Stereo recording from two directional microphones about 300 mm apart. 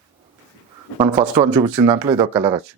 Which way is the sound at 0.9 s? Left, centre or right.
Centre.